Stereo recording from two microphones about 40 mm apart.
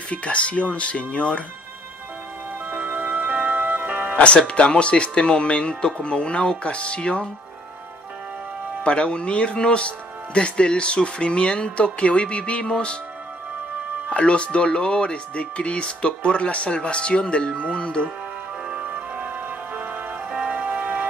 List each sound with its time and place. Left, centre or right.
0.1 s speech: left
2.7 s music: right
4.4 s speech: left
8.8 s speech: left
14.1 s speech: left
18.7 s music: right
20.2 s music: right